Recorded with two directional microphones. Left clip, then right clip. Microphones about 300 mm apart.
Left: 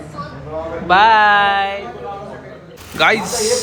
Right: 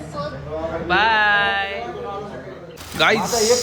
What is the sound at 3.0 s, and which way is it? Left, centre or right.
Speech, centre.